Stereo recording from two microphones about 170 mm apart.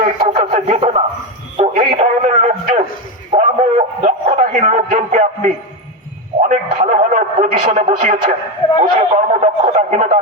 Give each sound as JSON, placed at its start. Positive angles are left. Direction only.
{"t": 0.0, "sound": "speech", "side_deg": -35}
{"t": 1.5, "sound": "a sound", "side_deg": -35}
{"t": 2.0, "sound": "speech", "side_deg": -40}
{"t": 3.3, "sound": "a sound", "side_deg": -40}
{"t": 6.5, "sound": "a man's voice", "side_deg": -45}
{"t": 8.8, "sound": "speech", "side_deg": -40}